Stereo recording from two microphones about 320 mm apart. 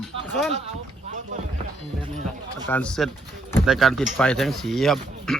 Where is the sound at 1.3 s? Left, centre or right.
Right.